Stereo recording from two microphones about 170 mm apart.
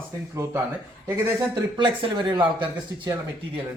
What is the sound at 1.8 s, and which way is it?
Speech, 30° right (ahead or behind).